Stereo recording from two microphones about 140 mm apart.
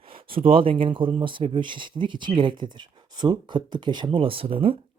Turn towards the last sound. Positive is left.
turn(degrees=-40)  # may be behind; listen again after turning